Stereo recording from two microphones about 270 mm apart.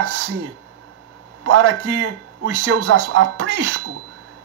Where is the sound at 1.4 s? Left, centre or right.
Right.